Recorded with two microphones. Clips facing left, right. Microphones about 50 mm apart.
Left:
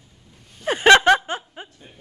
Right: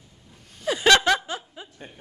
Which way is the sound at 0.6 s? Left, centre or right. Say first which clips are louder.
Left 5 dB; left.